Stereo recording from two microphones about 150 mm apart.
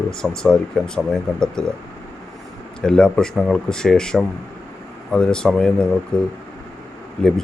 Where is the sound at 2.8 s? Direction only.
5° left (ahead or behind).